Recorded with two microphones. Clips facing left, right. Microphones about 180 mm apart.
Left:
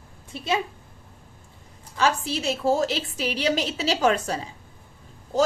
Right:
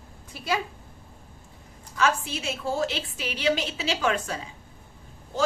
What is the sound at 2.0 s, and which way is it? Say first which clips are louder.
A woman's voice: left 2 dB; 35° left (ahead or behind).